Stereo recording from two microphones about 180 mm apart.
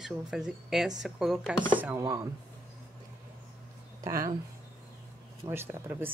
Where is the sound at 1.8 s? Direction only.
15° right (ahead or behind).